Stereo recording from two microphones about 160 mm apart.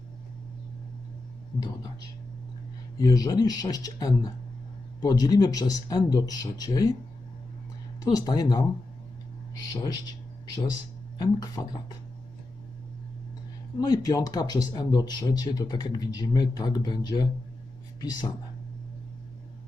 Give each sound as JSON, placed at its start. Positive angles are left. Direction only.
{"t": 1.5, "sound": "speech", "side_deg": 25}
{"t": 8.0, "sound": "speech", "side_deg": 25}
{"t": 11.2, "sound": "speech", "side_deg": 25}
{"t": 13.7, "sound": "speech", "side_deg": 25}